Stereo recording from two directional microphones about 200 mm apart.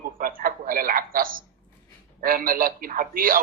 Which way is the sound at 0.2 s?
45° right (ahead or behind).